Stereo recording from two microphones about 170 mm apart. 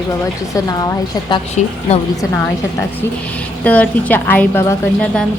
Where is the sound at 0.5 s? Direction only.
20° left (ahead or behind).